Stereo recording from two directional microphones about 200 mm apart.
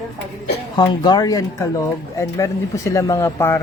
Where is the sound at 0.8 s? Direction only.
20° left (ahead or behind).